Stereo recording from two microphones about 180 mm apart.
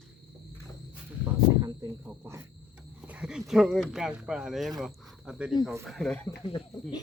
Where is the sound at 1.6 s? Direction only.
20° right (ahead or behind).